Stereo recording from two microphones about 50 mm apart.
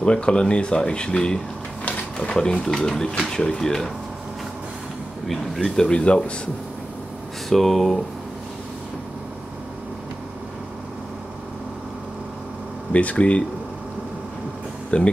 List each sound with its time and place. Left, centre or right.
0.0 s speech: left
5.3 s speech: centre
5.9 s speech: centre
7.4 s speech: centre
12.9 s speech: left
14.9 s speech: left